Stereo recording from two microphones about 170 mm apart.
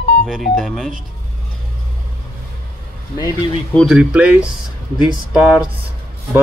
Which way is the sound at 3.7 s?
Centre (ahead or behind).